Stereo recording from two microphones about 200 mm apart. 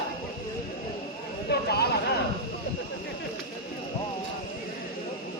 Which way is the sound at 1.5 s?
55° left (ahead or behind).